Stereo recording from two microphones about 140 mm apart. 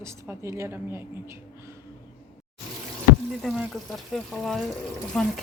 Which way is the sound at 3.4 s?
Centre (ahead or behind).